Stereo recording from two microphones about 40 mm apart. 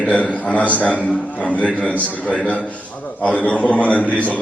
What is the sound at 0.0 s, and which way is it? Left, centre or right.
A man's voice, left.